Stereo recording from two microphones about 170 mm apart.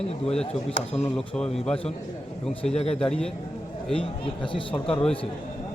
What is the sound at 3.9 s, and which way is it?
A man's voice, 35° left (ahead or behind).